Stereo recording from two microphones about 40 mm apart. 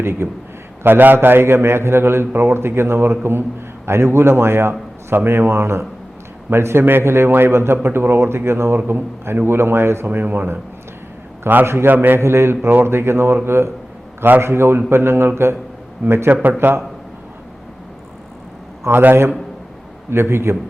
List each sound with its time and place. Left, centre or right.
0.0 s a man's voice: right
0.8 s a man's voice: right
3.8 s a man's voice: right
5.0 s a man's voice: right
7.3 s a man's voice: right
8.9 s a man's voice: right
10.1 s speech: right
11.6 s a man's voice: right
16.3 s speech: right
18.9 s a man's voice: right
20.1 s a man's voice: right